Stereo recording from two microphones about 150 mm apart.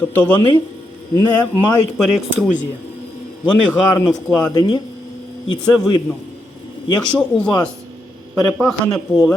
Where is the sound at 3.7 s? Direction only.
5° left (ahead or behind).